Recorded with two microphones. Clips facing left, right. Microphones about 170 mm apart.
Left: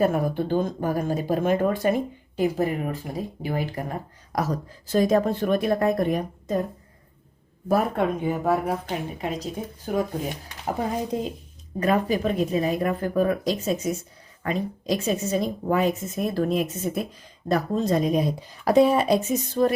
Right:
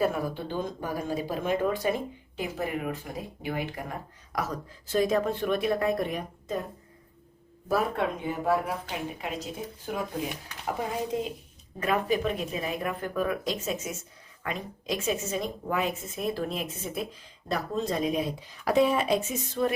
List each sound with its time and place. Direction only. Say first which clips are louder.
0.0 s speech: left 5 dB; 50° left (ahead or behind)
7.7 s speech: left 5 dB; 45° left (ahead or behind)
11.1 s speech: left 3 dB; 35° left (ahead or behind)